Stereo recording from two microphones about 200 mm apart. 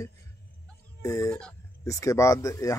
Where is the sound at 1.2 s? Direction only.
5° left (ahead or behind).